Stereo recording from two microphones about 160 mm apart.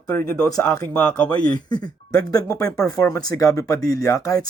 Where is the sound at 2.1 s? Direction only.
20° left (ahead or behind).